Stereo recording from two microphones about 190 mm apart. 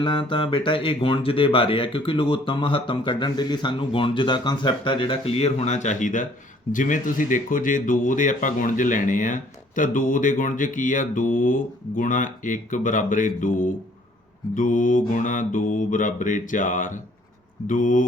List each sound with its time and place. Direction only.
0.0 s speech: 25° left (ahead or behind); by 18.0 s 45° left (ahead or behind)